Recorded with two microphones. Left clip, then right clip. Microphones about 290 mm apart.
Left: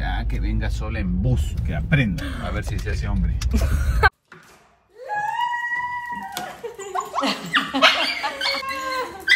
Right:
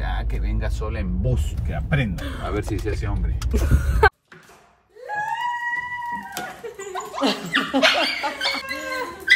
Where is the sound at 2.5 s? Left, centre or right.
Right.